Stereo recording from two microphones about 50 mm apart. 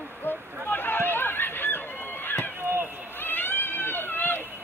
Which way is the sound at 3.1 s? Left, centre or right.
Left.